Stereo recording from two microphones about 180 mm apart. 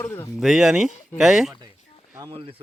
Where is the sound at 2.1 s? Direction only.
20° right (ahead or behind).